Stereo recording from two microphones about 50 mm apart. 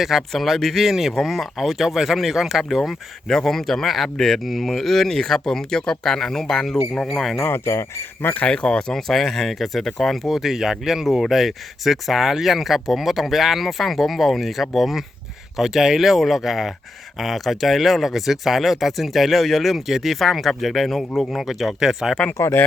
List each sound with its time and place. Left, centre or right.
0.0 s speech: centre
7.4 s speech: left
8.2 s speech: left
8.4 s speech: centre
9.0 s speech: centre
10.3 s speech: centre